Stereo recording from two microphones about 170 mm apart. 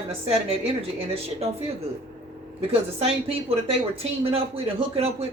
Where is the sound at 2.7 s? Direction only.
35° right (ahead or behind).